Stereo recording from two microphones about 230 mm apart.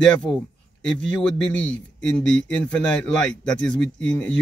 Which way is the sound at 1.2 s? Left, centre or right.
Centre.